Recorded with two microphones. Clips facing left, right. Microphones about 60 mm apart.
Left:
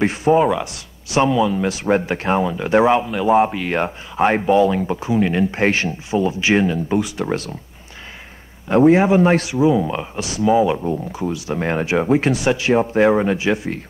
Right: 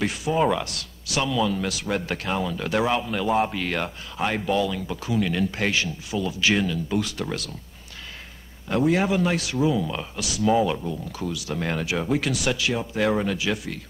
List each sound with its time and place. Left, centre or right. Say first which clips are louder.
0.0 s speech: left 10 dB; left
0.4 s speech: left 5 dB; centre
0.7 s speech: left 1 dB; left
3.7 s speech: left 8 dB; left
8.6 s speech: left 9 dB; left
9.5 s speech: left 7 dB; left